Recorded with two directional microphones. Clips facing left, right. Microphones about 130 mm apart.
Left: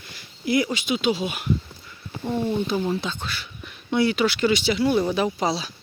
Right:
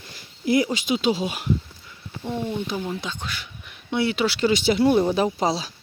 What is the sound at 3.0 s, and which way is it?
Speech, 15° right (ahead or behind).